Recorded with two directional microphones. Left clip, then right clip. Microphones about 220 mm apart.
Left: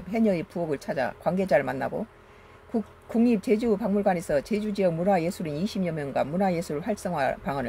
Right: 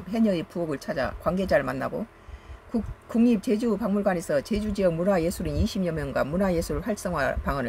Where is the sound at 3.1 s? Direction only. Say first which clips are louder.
Even; 10° right (ahead or behind).